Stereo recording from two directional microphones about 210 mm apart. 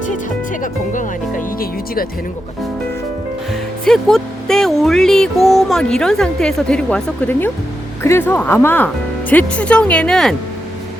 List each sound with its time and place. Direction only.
0.6 s music: 40° left (ahead or behind)
3.5 s speech: centre (ahead or behind)